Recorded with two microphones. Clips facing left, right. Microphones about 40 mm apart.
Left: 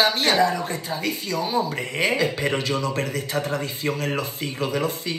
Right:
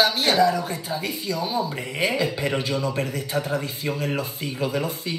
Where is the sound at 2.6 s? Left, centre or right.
Left.